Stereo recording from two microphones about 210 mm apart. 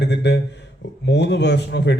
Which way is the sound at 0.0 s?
55° left (ahead or behind).